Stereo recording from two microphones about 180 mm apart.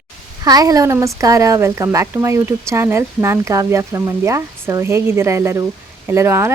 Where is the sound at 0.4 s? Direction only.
20° right (ahead or behind).